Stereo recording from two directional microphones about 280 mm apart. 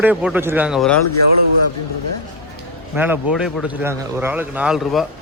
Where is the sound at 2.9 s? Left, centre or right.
Centre.